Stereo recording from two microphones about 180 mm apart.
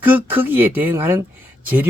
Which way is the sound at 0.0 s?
10° right (ahead or behind).